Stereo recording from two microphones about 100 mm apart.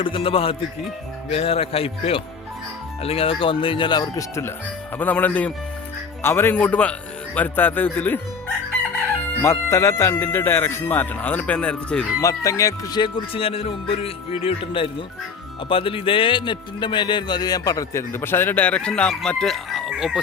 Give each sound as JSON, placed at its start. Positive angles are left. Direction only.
{"t": 0.0, "sound": "speech", "side_deg": 60}
{"t": 1.3, "sound": "speech", "side_deg": 85}
{"t": 4.9, "sound": "speech", "side_deg": 15}
{"t": 9.4, "sound": "speech", "side_deg": 25}
{"t": 12.2, "sound": "speech", "side_deg": 35}
{"t": 13.0, "sound": "speech", "side_deg": 60}
{"t": 18.1, "sound": "speech", "side_deg": 25}